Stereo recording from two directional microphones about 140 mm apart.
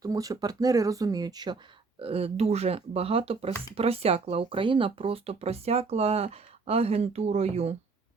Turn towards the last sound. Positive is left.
turn(degrees=-45)  # may be behind; listen again after turning